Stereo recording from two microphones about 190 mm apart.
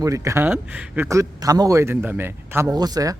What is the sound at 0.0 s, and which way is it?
Speech, 15° right (ahead or behind).